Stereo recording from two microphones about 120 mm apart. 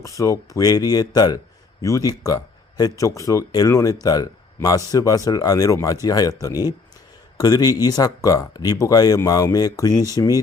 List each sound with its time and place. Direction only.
0.0 s speech: 25° left (ahead or behind)